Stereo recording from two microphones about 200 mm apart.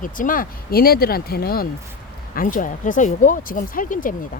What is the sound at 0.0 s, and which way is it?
Speech, 40° left (ahead or behind).